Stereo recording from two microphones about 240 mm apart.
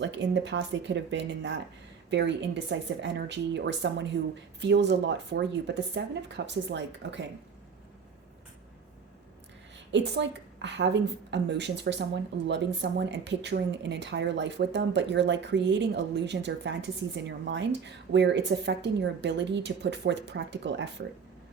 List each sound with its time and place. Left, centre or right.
0.0 s a woman's voice: right
9.7 s a woman's voice: right